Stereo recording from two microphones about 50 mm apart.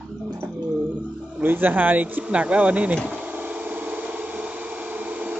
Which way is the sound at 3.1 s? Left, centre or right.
Right.